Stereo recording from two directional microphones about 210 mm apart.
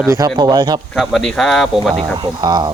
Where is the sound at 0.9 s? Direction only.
Centre (ahead or behind).